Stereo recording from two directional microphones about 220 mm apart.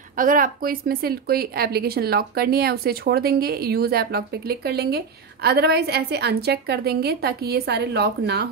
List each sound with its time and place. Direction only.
0.2 s speech: 40° right (ahead or behind)